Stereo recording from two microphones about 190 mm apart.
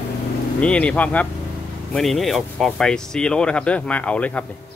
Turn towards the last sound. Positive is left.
turn(degrees=5)  # may be behind; listen again after turning